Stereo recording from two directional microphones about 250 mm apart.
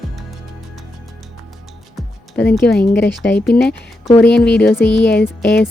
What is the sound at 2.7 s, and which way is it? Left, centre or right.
Speech, left.